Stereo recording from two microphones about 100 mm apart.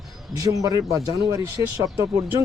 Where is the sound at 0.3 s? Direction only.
35° right (ahead or behind).